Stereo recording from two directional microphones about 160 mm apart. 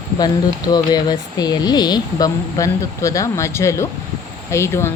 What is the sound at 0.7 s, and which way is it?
Speech, 25° left (ahead or behind).